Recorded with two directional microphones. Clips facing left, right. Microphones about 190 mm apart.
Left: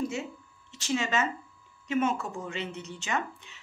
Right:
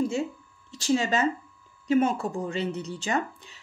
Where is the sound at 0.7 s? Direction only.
35° right (ahead or behind).